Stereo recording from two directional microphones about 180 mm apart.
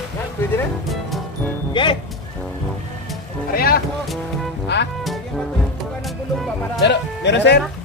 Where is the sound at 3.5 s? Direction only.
55° left (ahead or behind).